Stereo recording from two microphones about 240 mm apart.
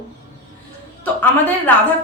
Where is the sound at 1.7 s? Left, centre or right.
Centre.